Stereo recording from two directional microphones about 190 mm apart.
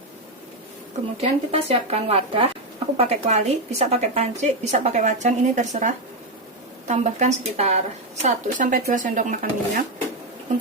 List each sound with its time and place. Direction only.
1.2 s a woman's voice: 30° right (ahead or behind)